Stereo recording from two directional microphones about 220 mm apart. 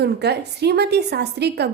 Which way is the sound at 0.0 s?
50° right (ahead or behind).